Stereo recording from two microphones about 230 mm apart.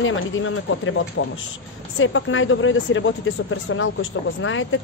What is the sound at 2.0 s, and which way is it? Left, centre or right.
Speech, left.